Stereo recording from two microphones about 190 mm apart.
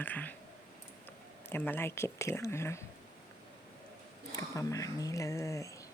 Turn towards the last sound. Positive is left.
turn(degrees=15)  # may be behind; listen again after turning